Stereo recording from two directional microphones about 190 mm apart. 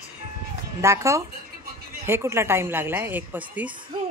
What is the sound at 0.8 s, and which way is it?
A woman's voice, 15° right (ahead or behind).